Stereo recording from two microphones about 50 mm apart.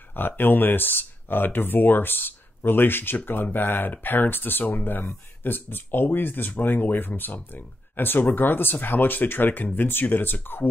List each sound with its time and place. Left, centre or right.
0.1 s speech: left